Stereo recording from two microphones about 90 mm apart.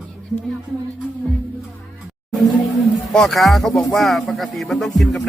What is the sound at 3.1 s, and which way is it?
A man's voice, 5° left (ahead or behind).